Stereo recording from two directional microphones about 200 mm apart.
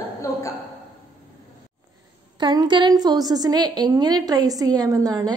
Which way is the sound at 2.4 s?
20° right (ahead or behind).